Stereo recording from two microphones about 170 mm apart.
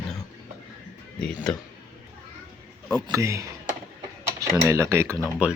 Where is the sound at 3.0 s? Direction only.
20° right (ahead or behind).